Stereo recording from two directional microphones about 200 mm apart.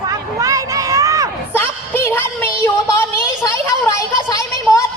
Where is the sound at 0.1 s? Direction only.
15° right (ahead or behind).